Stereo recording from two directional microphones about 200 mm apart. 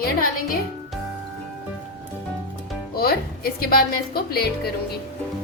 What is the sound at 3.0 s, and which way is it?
Speech, 50° left (ahead or behind).